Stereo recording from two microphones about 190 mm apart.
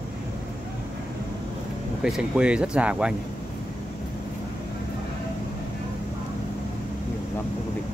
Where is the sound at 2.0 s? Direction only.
5° right (ahead or behind).